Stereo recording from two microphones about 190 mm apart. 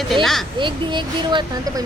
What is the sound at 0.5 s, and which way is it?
Speech, 25° right (ahead or behind).